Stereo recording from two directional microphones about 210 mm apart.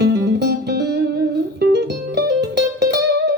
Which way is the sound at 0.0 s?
50° right (ahead or behind).